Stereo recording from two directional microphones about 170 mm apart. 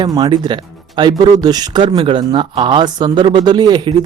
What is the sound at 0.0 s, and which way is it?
Speech, 25° right (ahead or behind).